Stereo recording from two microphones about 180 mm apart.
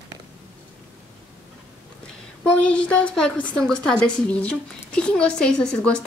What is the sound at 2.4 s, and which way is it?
A woman's voice, 5° left (ahead or behind).